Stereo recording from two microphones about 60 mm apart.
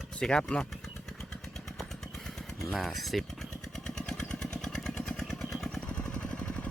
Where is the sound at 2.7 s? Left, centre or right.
Centre.